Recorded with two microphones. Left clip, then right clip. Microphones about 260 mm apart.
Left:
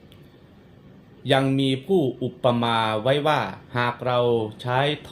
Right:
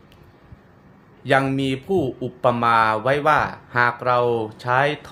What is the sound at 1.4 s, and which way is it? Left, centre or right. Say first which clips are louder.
Speech: even; right.